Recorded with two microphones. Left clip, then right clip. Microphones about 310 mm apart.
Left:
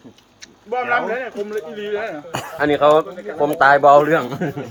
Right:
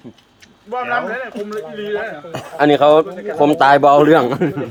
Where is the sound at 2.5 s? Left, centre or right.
Right.